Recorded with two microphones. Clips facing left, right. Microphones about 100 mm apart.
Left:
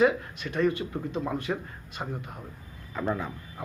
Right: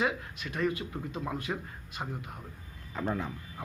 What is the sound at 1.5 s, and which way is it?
Speech, centre (ahead or behind).